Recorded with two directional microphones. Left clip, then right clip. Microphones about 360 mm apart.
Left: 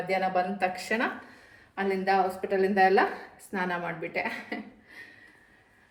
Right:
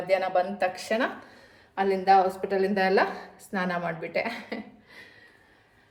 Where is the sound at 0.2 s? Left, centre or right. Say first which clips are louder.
Right 2 dB; centre.